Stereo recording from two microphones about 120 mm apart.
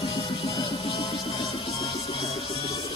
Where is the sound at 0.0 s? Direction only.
45° left (ahead or behind).